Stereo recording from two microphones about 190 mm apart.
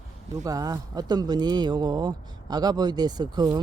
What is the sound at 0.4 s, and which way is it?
Speech, 20° right (ahead or behind).